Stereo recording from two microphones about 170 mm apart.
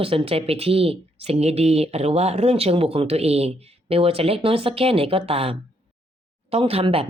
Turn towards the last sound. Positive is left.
turn(degrees=-35)  # may be behind; listen again after turning